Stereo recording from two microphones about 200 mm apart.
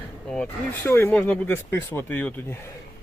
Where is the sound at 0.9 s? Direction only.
10° left (ahead or behind).